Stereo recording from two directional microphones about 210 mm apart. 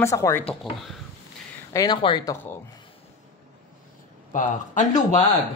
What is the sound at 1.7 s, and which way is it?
Speech, 20° left (ahead or behind).